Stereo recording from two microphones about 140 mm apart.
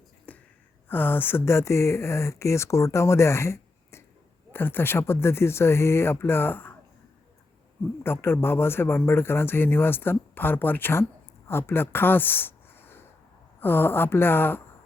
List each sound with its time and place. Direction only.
0.3 s a sound: 10° left (ahead or behind)
0.9 s speech: 15° left (ahead or behind)
8.0 s speech: 15° left (ahead or behind)